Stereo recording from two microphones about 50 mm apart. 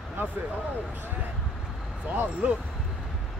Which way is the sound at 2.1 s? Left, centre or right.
Right.